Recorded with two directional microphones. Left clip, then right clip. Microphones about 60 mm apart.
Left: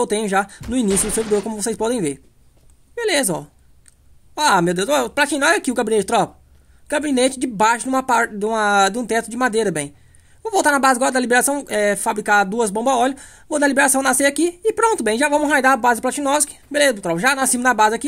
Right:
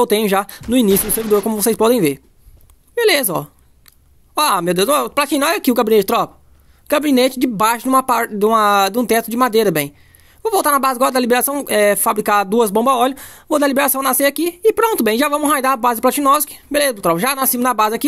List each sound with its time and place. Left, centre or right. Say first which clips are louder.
0.0 s speech: right 4 dB; right
0.8 s speech: even; centre
1.6 s speech: right 7 dB; right
4.6 s speech: right 3 dB; right
6.9 s speech: right 4 dB; right